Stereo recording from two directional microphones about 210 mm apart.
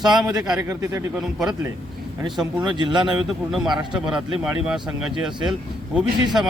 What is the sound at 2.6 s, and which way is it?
Speech, 20° right (ahead or behind).